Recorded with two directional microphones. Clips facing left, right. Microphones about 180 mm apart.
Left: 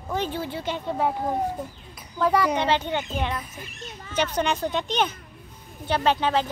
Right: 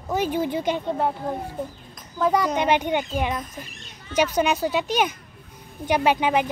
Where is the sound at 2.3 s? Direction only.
10° left (ahead or behind).